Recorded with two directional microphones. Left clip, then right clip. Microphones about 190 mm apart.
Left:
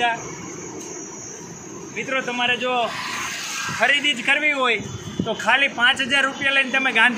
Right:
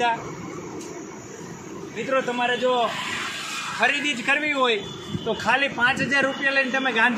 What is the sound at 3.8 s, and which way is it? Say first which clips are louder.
Speech: left 4 dB; centre (ahead or behind).